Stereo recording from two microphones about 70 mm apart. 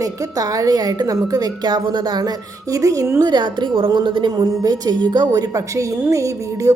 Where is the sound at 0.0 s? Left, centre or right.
Right.